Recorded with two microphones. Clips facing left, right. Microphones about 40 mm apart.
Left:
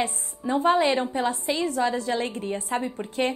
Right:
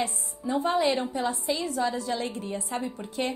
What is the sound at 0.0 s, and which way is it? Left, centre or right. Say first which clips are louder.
A woman's voice: left 2 dB; left.